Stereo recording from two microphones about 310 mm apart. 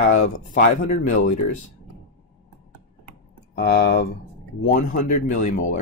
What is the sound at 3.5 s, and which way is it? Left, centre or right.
Speech, left.